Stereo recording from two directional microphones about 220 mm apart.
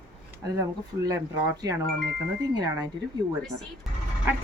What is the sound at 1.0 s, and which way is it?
Speech, 15° right (ahead or behind).